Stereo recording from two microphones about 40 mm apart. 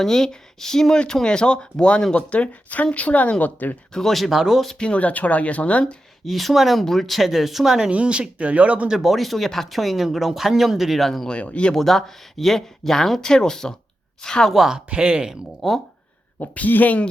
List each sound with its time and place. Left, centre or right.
0.0 s speech: centre
2.1 s speech: left
3.9 s speech: centre
4.3 s speech: centre
4.8 s speech: left
6.2 s speech: centre
7.9 s speech: right
9.0 s speech: centre
11.3 s speech: left
11.7 s speech: centre
14.8 s speech: right
15.6 s speech: centre
16.4 s speech: left